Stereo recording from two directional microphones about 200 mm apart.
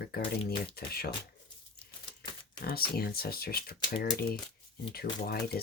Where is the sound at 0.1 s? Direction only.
50° left (ahead or behind).